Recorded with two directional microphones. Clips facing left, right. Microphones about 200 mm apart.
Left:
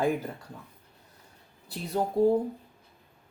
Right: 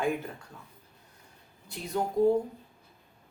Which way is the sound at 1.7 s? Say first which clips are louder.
Left 3 dB; 35° left (ahead or behind).